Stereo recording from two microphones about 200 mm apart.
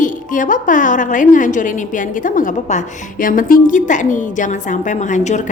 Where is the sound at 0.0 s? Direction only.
40° left (ahead or behind).